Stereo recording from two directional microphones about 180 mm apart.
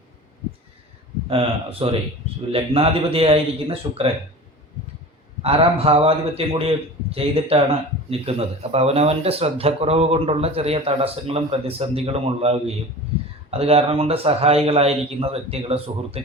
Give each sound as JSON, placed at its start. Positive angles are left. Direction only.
{"t": 1.3, "sound": "a man's voice", "side_deg": -30}
{"t": 5.4, "sound": "a man's voice", "side_deg": -35}
{"t": 13.1, "sound": "a sound", "side_deg": -35}
{"t": 13.5, "sound": "a man's voice", "side_deg": -35}